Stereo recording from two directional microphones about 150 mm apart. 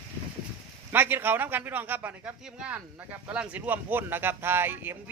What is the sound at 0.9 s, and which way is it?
A man's voice, 15° right (ahead or behind).